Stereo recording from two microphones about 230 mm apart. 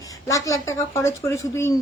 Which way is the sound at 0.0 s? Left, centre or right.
Centre.